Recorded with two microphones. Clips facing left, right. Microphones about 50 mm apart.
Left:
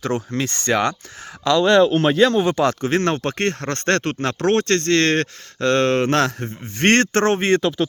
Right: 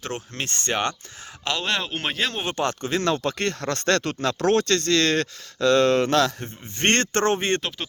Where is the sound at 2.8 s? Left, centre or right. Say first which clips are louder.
Left 4 dB; left.